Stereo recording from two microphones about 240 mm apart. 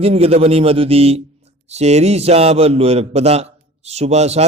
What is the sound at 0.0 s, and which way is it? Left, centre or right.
A man's voice, right.